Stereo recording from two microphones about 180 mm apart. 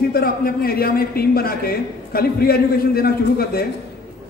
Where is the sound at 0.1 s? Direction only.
55° left (ahead or behind).